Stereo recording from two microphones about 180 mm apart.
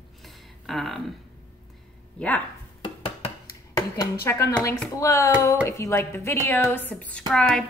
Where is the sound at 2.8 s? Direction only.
30° left (ahead or behind).